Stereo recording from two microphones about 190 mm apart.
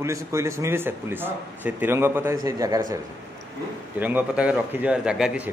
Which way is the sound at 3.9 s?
10° right (ahead or behind).